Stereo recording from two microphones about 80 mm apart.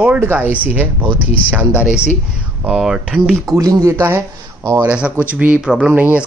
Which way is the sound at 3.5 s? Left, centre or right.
Right.